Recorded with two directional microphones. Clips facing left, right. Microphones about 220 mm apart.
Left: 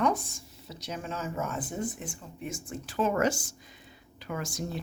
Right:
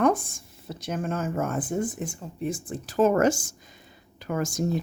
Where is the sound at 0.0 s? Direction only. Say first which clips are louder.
Right 5 dB; 50° right (ahead or behind).